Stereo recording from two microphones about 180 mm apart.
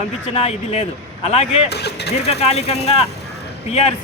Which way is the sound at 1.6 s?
65° left (ahead or behind).